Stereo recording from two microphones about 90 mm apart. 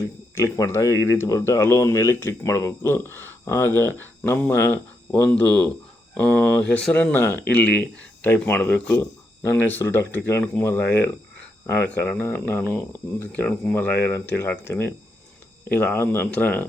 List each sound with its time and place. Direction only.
0.0 s speech: 30° left (ahead or behind)